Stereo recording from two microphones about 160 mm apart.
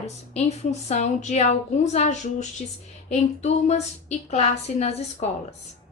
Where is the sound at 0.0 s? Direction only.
45° left (ahead or behind).